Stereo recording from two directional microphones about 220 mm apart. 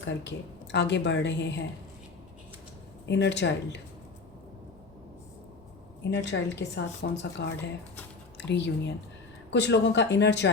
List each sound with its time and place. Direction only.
0.0 s a woman's voice: 50° left (ahead or behind)
3.1 s a woman's voice: 50° left (ahead or behind)
6.1 s a woman's voice: 50° left (ahead or behind)